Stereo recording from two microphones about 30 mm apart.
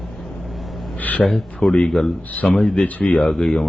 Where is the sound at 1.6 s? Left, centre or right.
Centre.